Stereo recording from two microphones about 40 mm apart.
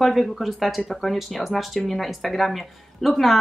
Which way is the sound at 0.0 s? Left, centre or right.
Centre.